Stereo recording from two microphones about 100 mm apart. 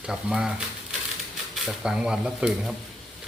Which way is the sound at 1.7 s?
5° right (ahead or behind).